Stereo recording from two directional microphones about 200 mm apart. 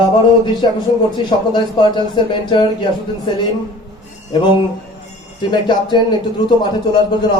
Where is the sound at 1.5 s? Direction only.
20° left (ahead or behind).